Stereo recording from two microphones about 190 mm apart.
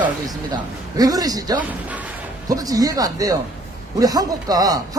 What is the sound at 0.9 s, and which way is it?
Speech, 20° right (ahead or behind).